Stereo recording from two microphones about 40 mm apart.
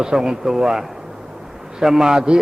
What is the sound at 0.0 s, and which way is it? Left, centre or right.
A man's voice, centre.